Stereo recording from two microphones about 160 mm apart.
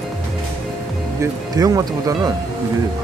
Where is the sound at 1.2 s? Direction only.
20° right (ahead or behind).